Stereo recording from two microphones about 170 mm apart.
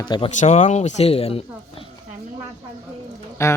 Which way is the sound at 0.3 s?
45° left (ahead or behind).